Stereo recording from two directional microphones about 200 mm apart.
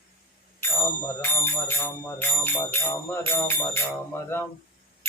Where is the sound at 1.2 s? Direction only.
10° left (ahead or behind).